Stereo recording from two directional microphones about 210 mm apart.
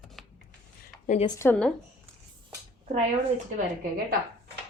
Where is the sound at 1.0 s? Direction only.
35° left (ahead or behind).